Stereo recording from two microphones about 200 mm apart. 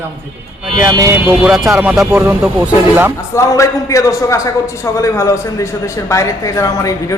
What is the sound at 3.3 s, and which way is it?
A man's voice, 15° left (ahead or behind).